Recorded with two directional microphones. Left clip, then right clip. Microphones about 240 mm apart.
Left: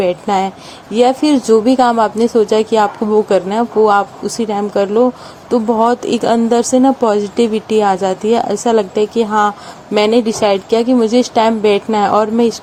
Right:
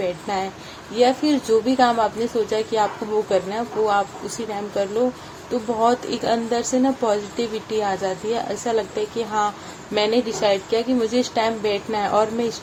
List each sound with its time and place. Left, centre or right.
0.0 s a woman's voice: left